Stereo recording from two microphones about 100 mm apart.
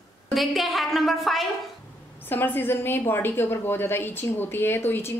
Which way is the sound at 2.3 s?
20° left (ahead or behind).